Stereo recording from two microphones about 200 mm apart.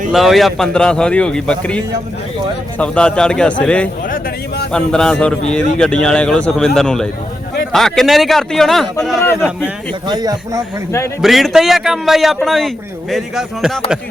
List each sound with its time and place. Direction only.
0.1 s a man's voice: centre (ahead or behind)
10.1 s speech: 20° right (ahead or behind)
11.2 s a man's voice: centre (ahead or behind)